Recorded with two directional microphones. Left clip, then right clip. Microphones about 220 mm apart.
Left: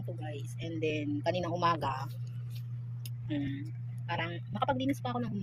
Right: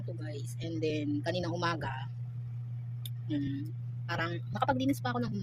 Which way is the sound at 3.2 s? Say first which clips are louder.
Right 1 dB; 15° right (ahead or behind).